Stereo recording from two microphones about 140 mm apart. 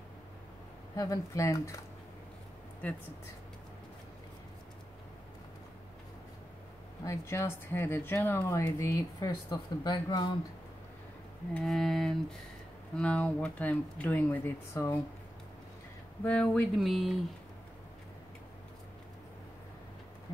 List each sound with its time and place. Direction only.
0.9 s speech: 25° left (ahead or behind)
2.8 s speech: 10° left (ahead or behind)
7.1 s speech: 20° left (ahead or behind)
11.5 s speech: centre (ahead or behind); by 15.0 s 20° left (ahead or behind)
16.3 s speech: 5° left (ahead or behind)